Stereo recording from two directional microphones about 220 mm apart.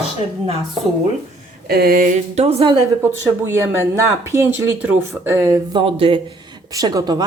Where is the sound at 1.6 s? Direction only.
45° right (ahead or behind); by 2.7 s 25° right (ahead or behind).